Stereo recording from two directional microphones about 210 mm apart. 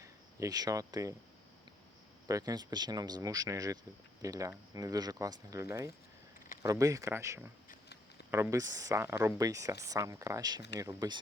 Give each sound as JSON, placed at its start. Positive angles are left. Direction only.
{"t": 0.0, "sound": "speech", "side_deg": -15}
{"t": 2.2, "sound": "speech", "side_deg": -15}